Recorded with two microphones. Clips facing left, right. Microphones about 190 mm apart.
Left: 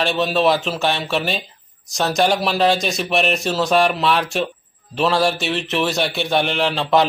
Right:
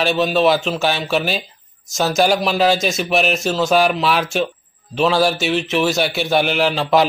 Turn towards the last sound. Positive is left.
turn(degrees=-5)  # may be behind; listen again after turning